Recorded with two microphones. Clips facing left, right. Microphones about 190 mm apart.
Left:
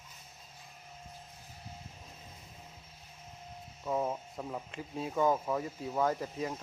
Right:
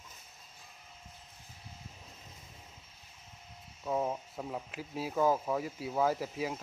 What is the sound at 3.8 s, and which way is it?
Speech, 5° right (ahead or behind).